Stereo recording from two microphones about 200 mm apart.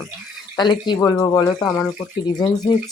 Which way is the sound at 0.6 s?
20° left (ahead or behind).